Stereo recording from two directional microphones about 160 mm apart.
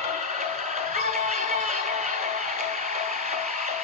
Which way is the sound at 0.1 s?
45° right (ahead or behind).